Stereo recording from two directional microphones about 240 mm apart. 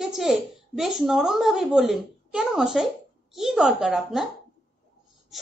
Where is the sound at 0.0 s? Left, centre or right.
Centre.